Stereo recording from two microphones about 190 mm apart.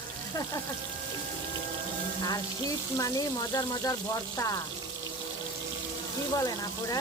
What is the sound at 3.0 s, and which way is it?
Speech, 20° left (ahead or behind).